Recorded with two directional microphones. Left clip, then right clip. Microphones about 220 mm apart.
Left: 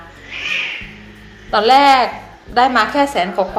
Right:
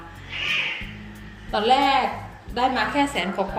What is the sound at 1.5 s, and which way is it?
A woman's voice, centre (ahead or behind).